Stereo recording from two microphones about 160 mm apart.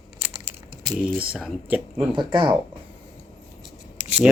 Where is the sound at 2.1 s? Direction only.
30° right (ahead or behind).